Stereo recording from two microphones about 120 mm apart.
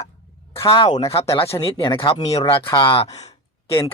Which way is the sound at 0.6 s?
40° left (ahead or behind).